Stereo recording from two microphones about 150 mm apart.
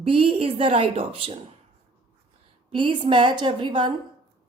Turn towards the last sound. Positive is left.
turn(degrees=-30)  # may be behind; listen again after turning